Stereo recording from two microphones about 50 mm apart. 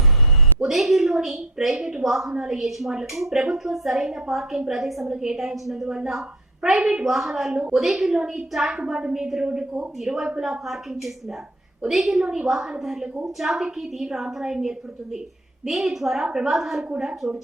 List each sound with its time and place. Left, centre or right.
0.6 s a woman's voice: centre
2.3 s a woman's voice: centre
8.1 s a woman's voice: centre
8.5 s a woman's voice: centre
11.9 s a woman's voice: centre
12.2 s a woman's voice: right
12.8 s a woman's voice: centre